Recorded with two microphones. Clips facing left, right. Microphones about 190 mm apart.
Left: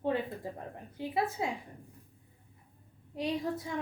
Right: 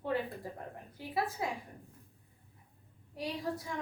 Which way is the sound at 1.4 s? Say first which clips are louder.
Left 2 dB; 20° left (ahead or behind).